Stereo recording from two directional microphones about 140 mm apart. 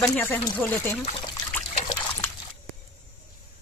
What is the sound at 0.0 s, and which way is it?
Speech, 15° left (ahead or behind).